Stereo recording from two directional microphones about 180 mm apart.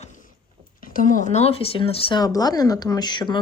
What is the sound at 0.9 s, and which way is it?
Speech, 45° left (ahead or behind).